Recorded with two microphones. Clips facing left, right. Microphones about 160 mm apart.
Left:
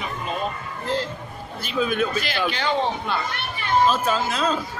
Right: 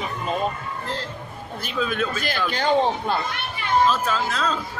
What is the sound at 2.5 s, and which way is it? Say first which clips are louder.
Speech: right 6 dB; 45° right (ahead or behind).